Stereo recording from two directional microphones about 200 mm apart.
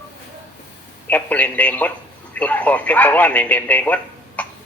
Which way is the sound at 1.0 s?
10° left (ahead or behind).